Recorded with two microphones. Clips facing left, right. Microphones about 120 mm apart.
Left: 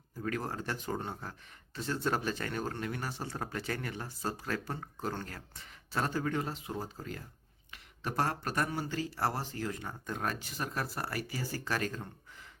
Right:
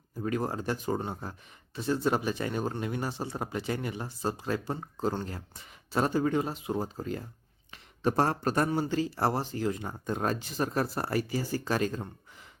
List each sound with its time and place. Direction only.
0.2 s speech: 20° right (ahead or behind)